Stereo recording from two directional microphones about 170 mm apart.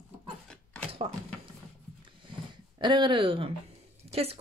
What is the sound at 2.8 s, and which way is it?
A woman's voice, 25° right (ahead or behind).